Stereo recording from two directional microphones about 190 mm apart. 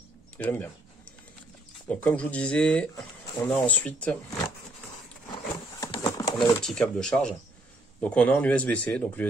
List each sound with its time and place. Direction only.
0.4 s a man's voice: 10° left (ahead or behind)
1.9 s a man's voice: 5° left (ahead or behind)
5.3 s a sound: 20° left (ahead or behind)
6.6 s a man's voice: 5° left (ahead or behind)